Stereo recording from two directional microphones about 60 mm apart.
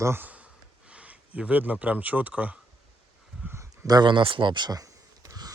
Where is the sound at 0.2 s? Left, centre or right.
Right.